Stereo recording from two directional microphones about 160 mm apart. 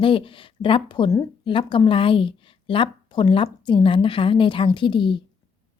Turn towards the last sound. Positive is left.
turn(degrees=30)  # may be behind; listen again after turning